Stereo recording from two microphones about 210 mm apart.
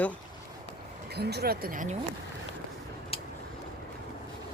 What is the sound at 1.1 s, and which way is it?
Speech, 50° right (ahead or behind).